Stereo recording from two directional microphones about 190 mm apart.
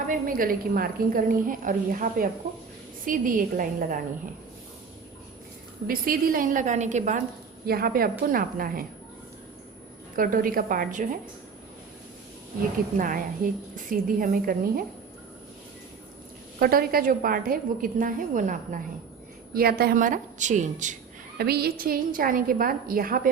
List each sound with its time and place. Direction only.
0.1 s a woman's voice: 45° right (ahead or behind)
5.9 s a woman's voice: 45° right (ahead or behind)
7.7 s a woman's voice: 50° right (ahead or behind)
10.2 s a woman's voice: 45° right (ahead or behind)
13.0 s a woman's voice: 45° right (ahead or behind)
16.6 s a woman's voice: 50° right (ahead or behind)
19.5 s a woman's voice: 55° right (ahead or behind)
21.3 s a woman's voice: 55° right (ahead or behind)